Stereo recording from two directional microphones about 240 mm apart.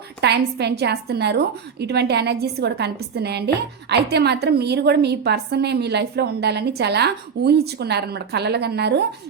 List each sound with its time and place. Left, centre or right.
0.2 s a woman's voice: right